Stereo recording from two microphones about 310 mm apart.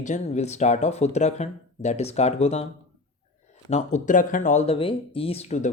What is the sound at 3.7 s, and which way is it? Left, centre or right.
Speech, left.